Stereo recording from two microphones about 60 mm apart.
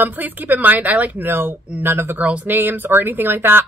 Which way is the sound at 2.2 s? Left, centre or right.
Right.